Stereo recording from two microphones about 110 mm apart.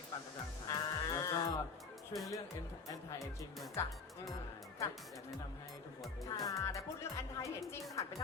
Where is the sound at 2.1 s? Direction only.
Centre (ahead or behind).